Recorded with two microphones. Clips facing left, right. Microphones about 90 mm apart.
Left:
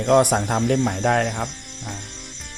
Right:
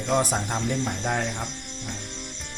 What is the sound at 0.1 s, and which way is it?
Speech, 65° left (ahead or behind).